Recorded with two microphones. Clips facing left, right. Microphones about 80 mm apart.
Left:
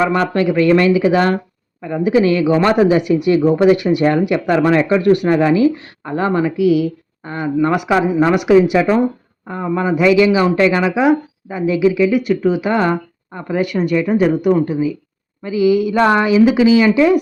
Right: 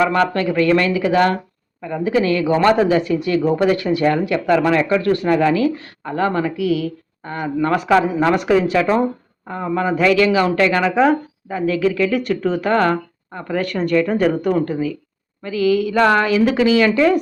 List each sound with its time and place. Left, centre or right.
0.0 s speech: left